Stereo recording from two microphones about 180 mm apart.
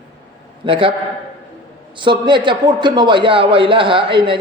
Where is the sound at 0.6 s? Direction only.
30° right (ahead or behind).